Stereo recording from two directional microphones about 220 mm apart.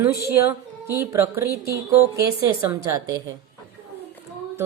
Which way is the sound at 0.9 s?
10° right (ahead or behind).